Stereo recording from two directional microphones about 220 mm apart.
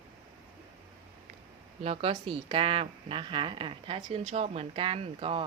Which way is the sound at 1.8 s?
25° right (ahead or behind).